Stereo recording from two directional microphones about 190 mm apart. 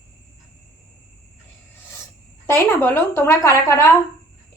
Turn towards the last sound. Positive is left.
turn(degrees=15)  # may be behind; listen again after turning